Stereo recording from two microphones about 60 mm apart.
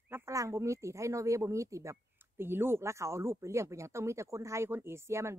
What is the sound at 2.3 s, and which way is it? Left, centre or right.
Speech, right.